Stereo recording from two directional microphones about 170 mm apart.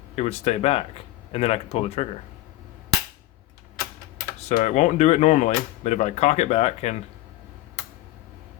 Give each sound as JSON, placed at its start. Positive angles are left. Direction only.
{"t": 0.2, "sound": "speech", "side_deg": 40}
{"t": 4.4, "sound": "speech", "side_deg": 40}